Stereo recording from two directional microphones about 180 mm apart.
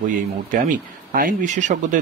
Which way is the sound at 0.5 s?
50° right (ahead or behind).